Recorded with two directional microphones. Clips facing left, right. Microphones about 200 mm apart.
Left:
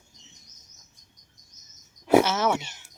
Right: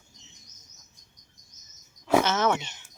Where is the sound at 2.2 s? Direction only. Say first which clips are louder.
Left 2 dB; 10° left (ahead or behind).